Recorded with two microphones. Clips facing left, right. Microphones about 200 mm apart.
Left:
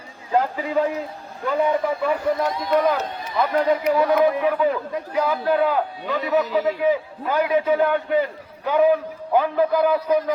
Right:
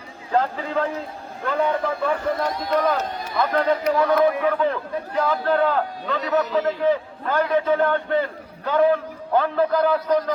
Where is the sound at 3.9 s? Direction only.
15° left (ahead or behind).